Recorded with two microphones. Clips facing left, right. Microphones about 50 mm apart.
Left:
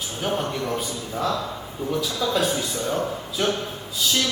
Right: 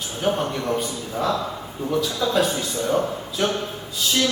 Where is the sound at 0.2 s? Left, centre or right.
Centre.